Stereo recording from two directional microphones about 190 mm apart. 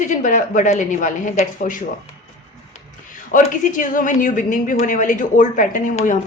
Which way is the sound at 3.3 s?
45° left (ahead or behind).